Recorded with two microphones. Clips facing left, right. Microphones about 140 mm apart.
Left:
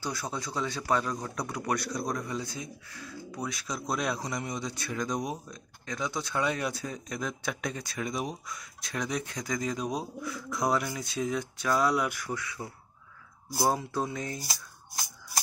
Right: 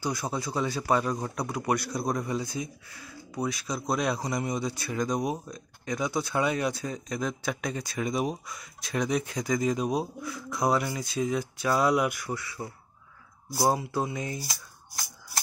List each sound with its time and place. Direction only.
0.0 s speech: 15° right (ahead or behind)
2.0 s a man's voice: 25° right (ahead or behind)
2.3 s speech: 10° right (ahead or behind)
13.7 s speech: 10° right (ahead or behind)